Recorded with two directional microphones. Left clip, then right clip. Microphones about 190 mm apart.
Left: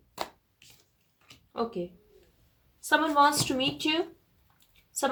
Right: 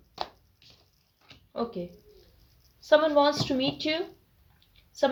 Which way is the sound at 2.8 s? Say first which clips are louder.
Right 2 dB; 35° left (ahead or behind).